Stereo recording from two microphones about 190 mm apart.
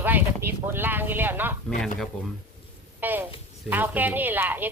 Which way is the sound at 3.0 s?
10° right (ahead or behind).